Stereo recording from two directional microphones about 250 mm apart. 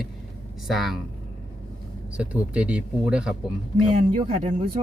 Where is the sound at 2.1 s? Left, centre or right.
Centre.